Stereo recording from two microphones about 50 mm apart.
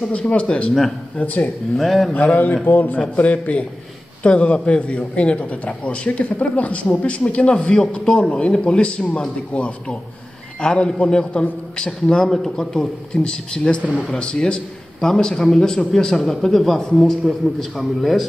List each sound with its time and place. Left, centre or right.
0.0 s a man's voice: left
1.8 s a man's voice: centre
2.1 s a man's voice: left; by 13.8 s centre
13.8 s a man's voice: centre
14.1 s a man's voice: centre